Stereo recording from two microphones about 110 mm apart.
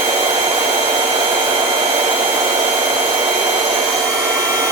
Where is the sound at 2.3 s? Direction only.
35° right (ahead or behind).